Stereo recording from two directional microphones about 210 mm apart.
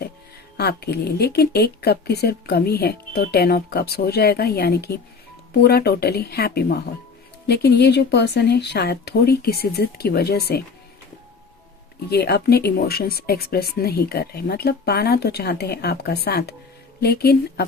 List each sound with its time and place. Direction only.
0.5 s speech: 50° left (ahead or behind)
12.1 s speech: 50° left (ahead or behind)